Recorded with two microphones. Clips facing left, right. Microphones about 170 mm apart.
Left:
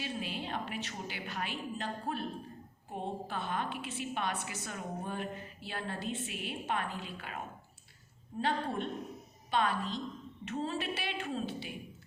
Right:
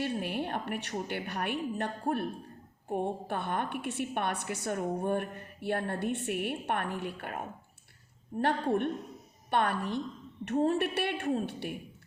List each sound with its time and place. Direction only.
0.0 s a woman's voice: 60° right (ahead or behind)